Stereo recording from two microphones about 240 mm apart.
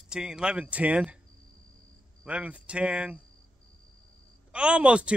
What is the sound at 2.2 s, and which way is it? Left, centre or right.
Speech, centre.